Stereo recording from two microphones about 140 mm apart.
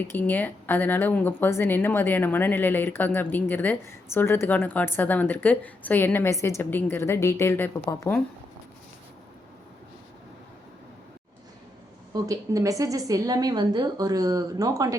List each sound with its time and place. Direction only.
0.0 s speech: 10° left (ahead or behind)
12.1 s a woman's voice: 25° right (ahead or behind)